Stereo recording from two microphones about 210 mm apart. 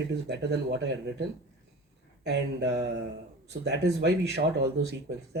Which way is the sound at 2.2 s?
55° right (ahead or behind).